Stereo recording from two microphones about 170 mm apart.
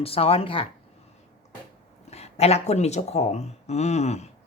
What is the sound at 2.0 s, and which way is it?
Speech, 40° left (ahead or behind).